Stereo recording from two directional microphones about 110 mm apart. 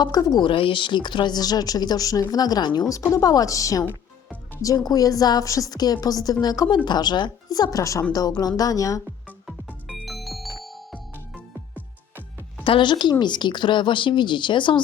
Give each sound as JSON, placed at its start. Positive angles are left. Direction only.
{"t": 0.0, "sound": "a woman's voice", "side_deg": 35}
{"t": 9.8, "sound": "music", "side_deg": 0}
{"t": 12.6, "sound": "a woman's voice", "side_deg": 50}